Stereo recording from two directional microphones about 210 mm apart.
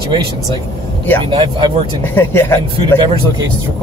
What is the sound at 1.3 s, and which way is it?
Speech, 20° right (ahead or behind).